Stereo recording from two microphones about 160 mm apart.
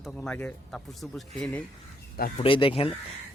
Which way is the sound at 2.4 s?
35° left (ahead or behind).